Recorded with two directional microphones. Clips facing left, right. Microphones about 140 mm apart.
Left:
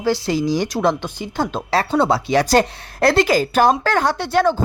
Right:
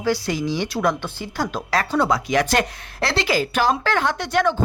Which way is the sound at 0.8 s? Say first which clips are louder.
Left 3 dB; 25° left (ahead or behind).